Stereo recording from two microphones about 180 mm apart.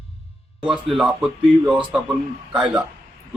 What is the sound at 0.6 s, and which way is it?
Music, 25° right (ahead or behind).